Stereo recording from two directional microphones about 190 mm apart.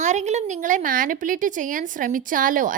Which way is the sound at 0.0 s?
40° right (ahead or behind).